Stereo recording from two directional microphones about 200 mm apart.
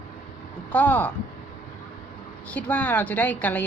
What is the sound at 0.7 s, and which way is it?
Speech, 10° left (ahead or behind).